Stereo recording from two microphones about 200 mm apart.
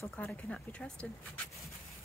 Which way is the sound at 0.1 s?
5° left (ahead or behind).